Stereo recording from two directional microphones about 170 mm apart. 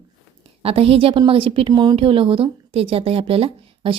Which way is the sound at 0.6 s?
35° right (ahead or behind).